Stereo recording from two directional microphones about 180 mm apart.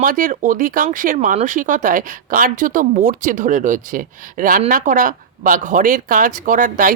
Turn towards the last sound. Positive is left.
turn(degrees=-50)  # may be behind; listen again after turning